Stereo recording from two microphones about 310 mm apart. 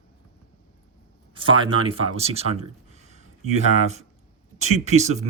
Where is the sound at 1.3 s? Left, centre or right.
Centre.